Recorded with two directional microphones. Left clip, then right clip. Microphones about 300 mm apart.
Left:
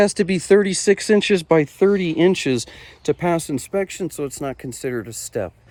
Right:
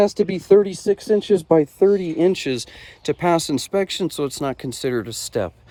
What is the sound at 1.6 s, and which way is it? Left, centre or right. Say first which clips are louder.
Speech: right 1 dB; left.